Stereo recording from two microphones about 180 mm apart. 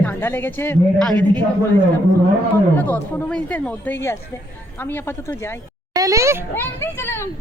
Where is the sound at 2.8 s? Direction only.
10° left (ahead or behind).